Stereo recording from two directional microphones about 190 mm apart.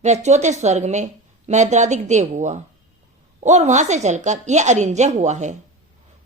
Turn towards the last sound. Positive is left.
turn(degrees=-40)  # may be behind; listen again after turning